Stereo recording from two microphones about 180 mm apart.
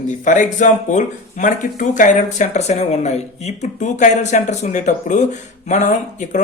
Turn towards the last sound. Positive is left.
turn(degrees=45)  # may be behind; listen again after turning